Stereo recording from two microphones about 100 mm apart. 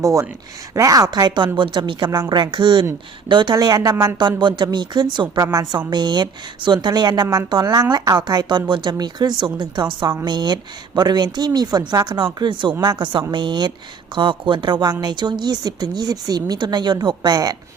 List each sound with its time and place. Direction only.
0.0 s speech: 35° right (ahead or behind)
1.5 s speech: 55° right (ahead or behind)
2.0 s speech: 30° right (ahead or behind)
2.3 s speech: 50° right (ahead or behind)
3.5 s speech: 40° right (ahead or behind)